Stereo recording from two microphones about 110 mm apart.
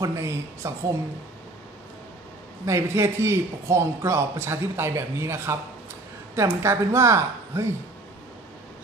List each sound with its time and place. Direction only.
0.0 s a man's voice: 25° right (ahead or behind)
2.6 s a man's voice: 25° right (ahead or behind)